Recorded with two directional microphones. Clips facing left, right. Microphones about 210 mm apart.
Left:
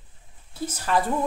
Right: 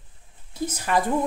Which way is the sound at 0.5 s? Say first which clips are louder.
Right 1 dB; 15° right (ahead or behind).